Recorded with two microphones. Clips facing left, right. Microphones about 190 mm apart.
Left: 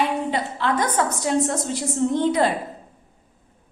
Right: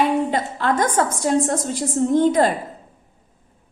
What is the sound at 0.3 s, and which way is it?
A woman's voice, 45° right (ahead or behind).